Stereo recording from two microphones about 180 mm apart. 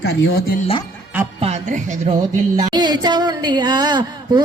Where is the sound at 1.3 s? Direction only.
35° right (ahead or behind).